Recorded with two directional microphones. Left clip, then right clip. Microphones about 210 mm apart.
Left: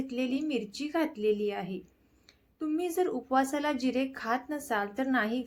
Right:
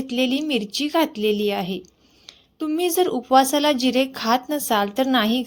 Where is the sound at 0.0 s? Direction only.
40° right (ahead or behind).